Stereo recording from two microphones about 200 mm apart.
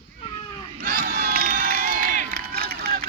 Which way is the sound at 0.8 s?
45° right (ahead or behind).